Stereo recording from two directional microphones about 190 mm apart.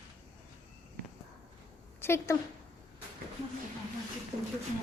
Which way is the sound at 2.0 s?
15° left (ahead or behind).